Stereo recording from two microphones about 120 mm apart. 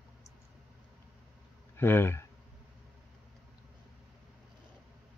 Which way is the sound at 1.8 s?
20° left (ahead or behind).